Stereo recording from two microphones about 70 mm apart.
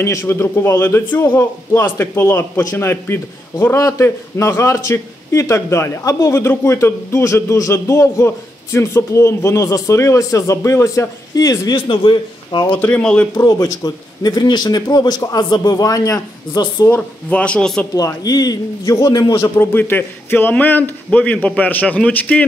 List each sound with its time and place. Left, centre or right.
0.0 s a man's voice: left
0.3 s a man's voice: left
11.3 s a man's voice: left
12.7 s a man's voice: left
13.3 s a man's voice: left
16.9 s a man's voice: centre
17.9 s a man's voice: left
19.4 s a man's voice: left